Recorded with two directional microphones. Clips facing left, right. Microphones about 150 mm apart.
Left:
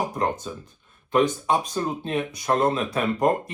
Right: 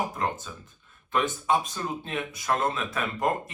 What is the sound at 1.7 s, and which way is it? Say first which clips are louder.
Speech: left 6 dB; 35° left (ahead or behind).